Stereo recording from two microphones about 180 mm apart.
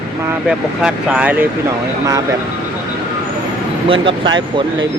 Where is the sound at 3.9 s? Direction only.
25° right (ahead or behind).